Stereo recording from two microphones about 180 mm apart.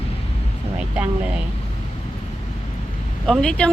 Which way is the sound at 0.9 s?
5° right (ahead or behind).